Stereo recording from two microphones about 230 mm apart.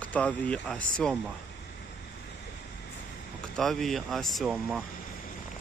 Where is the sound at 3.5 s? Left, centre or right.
Centre.